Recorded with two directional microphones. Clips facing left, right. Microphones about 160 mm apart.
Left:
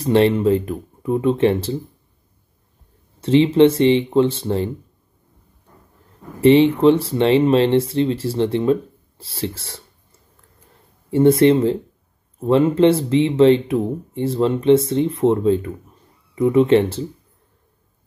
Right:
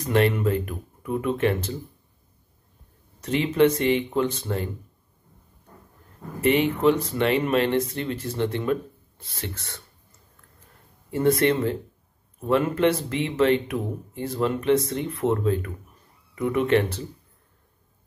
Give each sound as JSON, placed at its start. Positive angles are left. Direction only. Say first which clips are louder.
{"t": 0.0, "sound": "speech", "louder": "left 6 dB", "side_deg": 30}
{"t": 3.2, "sound": "speech", "louder": "left 8 dB", "side_deg": 30}
{"t": 6.4, "sound": "speech", "louder": "left 8 dB", "side_deg": 30}
{"t": 11.1, "sound": "speech", "louder": "left 8 dB", "side_deg": 30}